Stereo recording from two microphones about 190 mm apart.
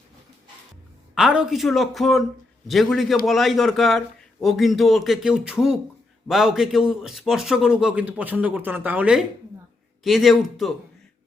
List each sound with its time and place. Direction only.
1.1 s a man's voice: 5° right (ahead or behind)